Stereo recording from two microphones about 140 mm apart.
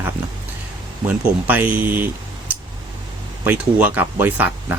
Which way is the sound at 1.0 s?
10° right (ahead or behind).